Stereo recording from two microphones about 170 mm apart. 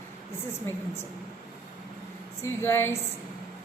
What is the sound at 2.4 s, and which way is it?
Speech, 15° left (ahead or behind).